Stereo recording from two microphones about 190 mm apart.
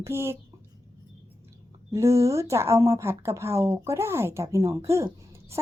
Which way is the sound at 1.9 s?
15° right (ahead or behind).